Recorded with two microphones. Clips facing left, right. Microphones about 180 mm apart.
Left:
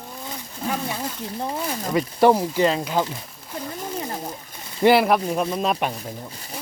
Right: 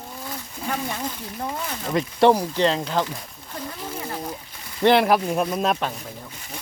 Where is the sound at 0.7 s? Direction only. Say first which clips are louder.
Left 1 dB; 10° left (ahead or behind).